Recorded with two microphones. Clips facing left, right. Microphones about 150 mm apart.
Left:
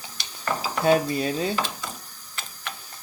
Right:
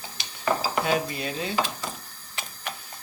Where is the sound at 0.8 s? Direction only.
40° left (ahead or behind).